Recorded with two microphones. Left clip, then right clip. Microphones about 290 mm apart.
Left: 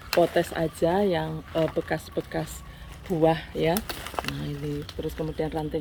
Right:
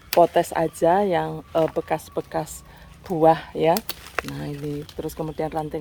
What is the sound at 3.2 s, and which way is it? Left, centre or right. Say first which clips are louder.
Speech: right 6 dB; centre.